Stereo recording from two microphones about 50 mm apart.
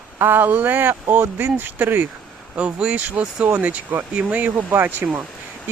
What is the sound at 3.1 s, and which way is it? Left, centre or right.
Speech, right.